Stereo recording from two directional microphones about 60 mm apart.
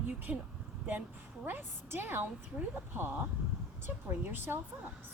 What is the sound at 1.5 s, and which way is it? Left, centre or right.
Speech, right.